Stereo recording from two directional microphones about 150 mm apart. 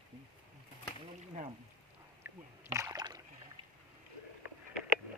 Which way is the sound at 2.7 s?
20° right (ahead or behind).